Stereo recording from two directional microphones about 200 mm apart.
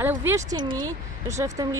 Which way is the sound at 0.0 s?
10° right (ahead or behind).